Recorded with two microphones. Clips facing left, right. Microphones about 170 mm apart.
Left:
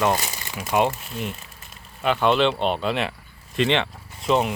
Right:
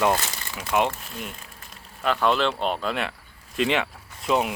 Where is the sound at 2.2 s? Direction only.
20° left (ahead or behind).